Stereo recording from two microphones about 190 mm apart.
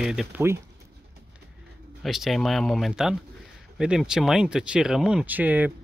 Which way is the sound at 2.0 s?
Centre (ahead or behind).